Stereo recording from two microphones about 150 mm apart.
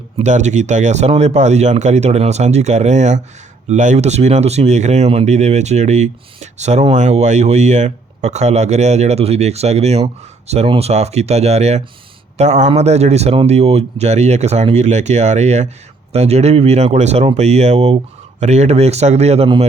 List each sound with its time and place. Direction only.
0.2 s speech: 50° right (ahead or behind)